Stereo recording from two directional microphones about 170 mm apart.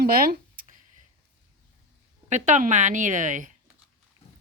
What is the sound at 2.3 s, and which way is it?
A woman's voice, 45° right (ahead or behind).